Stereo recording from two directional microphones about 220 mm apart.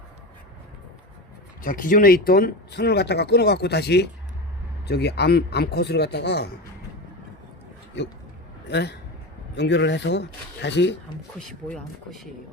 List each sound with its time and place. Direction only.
1.6 s speech: 40° left (ahead or behind)
8.0 s speech: 50° left (ahead or behind)
11.3 s speech: centre (ahead or behind)